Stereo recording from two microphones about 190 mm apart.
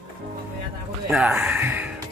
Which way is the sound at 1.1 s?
5° right (ahead or behind).